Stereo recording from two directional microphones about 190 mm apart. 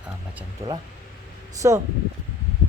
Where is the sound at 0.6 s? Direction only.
30° right (ahead or behind).